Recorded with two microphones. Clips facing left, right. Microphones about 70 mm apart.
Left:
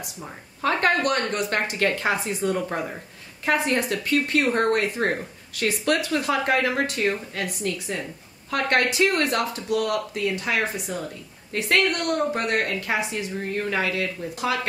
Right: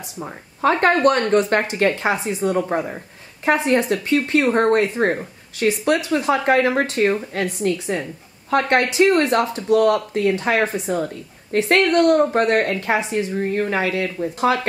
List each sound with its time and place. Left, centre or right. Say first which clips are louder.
0.0 s speech: right 5 dB; right